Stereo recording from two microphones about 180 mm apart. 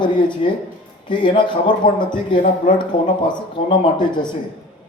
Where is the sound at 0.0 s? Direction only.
25° left (ahead or behind).